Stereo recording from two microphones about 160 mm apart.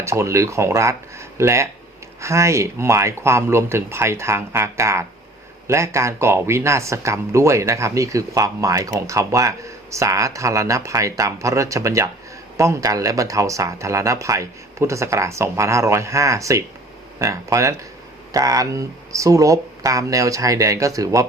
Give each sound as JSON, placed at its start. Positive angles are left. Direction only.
{"t": 0.0, "sound": "speech", "side_deg": -15}